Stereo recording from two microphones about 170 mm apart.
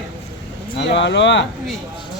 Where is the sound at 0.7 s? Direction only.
90° left.